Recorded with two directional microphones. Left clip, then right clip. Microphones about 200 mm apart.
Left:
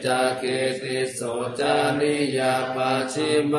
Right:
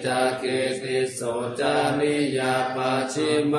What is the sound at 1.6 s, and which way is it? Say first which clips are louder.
Mantra: left 1 dB; 20° left (ahead or behind).